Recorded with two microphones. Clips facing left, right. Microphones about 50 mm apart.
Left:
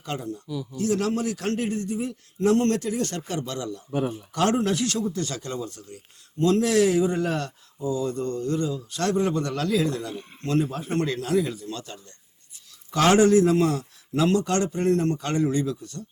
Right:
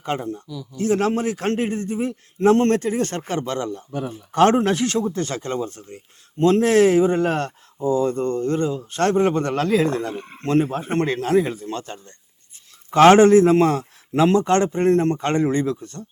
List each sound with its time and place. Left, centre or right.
0.0 s speech: right
0.4 s speech: centre
0.8 s speech: right